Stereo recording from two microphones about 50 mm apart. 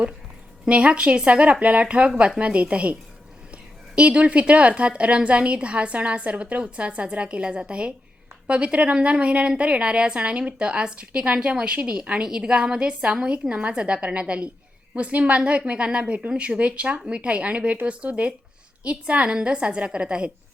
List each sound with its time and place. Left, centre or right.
0.7 s a woman's voice: right